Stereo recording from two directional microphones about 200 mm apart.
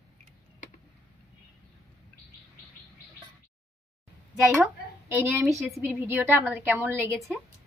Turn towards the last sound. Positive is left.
turn(degrees=-10)  # may be behind; listen again after turning